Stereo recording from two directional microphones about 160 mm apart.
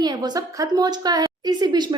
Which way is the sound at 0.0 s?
25° right (ahead or behind).